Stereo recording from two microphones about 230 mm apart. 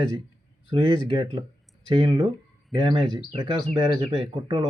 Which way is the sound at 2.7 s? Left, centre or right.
Centre.